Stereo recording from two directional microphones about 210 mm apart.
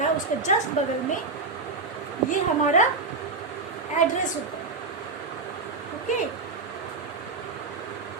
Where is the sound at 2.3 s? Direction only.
35° left (ahead or behind).